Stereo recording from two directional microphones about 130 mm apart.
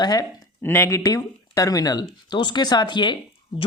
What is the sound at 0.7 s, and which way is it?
Speech, 20° left (ahead or behind).